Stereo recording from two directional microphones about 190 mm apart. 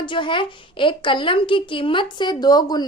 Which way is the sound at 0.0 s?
25° left (ahead or behind).